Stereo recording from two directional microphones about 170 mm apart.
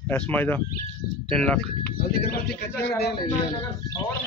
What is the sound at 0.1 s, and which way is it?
Speech, 10° left (ahead or behind).